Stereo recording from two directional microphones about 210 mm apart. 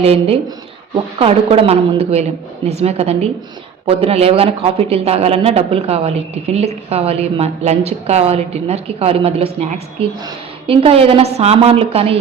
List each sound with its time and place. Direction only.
0.0 s a man's voice: 30° right (ahead or behind)